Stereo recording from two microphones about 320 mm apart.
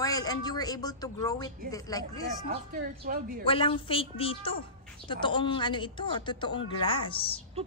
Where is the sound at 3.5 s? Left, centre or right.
Centre.